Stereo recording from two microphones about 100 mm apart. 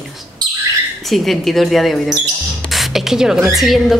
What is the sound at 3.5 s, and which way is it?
Speech, centre (ahead or behind).